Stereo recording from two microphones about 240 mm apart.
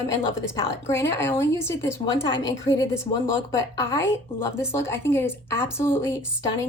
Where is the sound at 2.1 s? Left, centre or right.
Left.